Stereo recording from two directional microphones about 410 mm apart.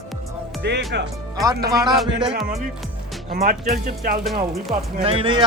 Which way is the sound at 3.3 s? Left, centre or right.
Right.